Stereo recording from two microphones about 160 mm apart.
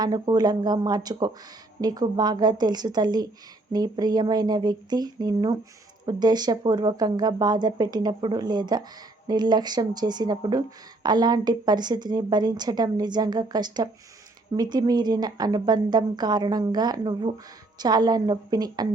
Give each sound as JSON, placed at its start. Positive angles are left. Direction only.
{"t": 0.0, "sound": "speech", "side_deg": -25}